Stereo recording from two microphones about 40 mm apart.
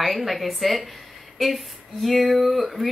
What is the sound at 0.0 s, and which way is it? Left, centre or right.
Speech, centre.